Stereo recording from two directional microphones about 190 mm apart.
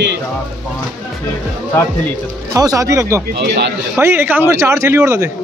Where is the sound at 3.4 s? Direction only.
65° right (ahead or behind).